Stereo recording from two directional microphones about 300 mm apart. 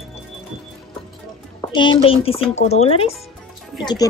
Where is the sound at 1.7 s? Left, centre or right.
Centre.